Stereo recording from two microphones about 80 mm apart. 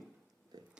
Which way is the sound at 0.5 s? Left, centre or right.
Right.